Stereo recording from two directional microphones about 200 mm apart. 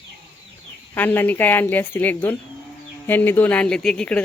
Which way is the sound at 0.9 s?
10° left (ahead or behind).